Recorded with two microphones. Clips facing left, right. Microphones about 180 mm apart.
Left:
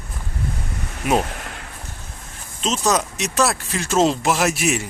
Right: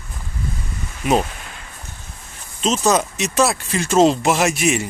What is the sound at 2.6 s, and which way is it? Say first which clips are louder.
Speech: right 3 dB; centre (ahead or behind).